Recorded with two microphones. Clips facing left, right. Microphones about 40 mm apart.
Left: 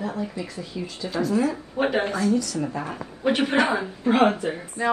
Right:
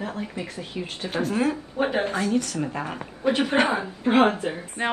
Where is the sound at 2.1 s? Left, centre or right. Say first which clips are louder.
Left 1 dB; right.